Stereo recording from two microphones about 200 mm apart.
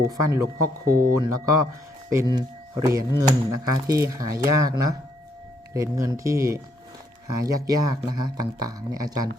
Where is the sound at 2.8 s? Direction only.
15° right (ahead or behind).